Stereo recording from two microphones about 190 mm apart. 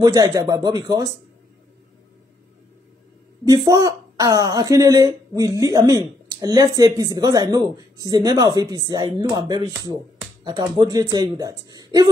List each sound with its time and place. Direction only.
0.0 s a woman's voice: 20° right (ahead or behind)
3.4 s a woman's voice: 20° right (ahead or behind)